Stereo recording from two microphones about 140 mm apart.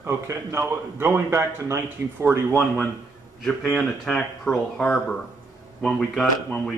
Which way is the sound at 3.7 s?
5° left (ahead or behind).